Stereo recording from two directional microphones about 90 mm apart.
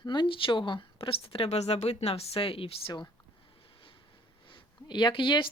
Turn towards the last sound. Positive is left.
turn(degrees=65)  # may be behind; listen again after turning